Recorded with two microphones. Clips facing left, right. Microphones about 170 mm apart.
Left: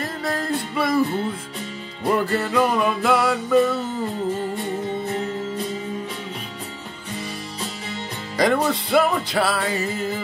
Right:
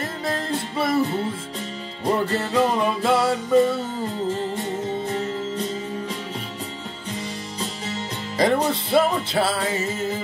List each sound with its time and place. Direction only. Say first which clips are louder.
0.0 s music: left 1 dB; 25° right (ahead or behind)
2.1 s music: left 1 dB; 25° right (ahead or behind)
8.4 s music: even; 25° right (ahead or behind)